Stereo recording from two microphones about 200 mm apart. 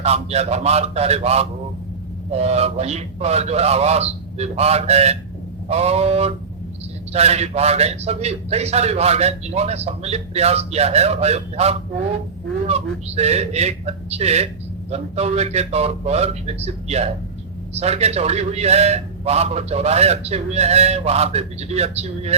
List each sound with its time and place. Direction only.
0.0 s a man's voice: 30° right (ahead or behind)